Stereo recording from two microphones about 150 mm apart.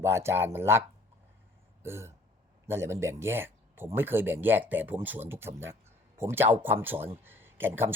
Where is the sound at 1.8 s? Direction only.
15° right (ahead or behind).